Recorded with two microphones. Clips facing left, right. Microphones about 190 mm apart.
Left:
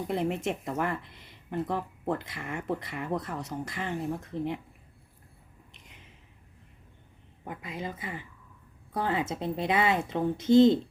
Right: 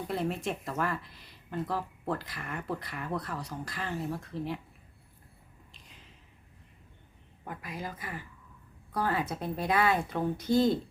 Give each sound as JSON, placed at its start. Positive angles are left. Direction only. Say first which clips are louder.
{"t": 0.1, "sound": "speech", "louder": "left 3 dB", "side_deg": 20}
{"t": 5.7, "sound": "a sound", "louder": "left 2 dB", "side_deg": 20}
{"t": 7.4, "sound": "speech", "louder": "left 2 dB", "side_deg": 20}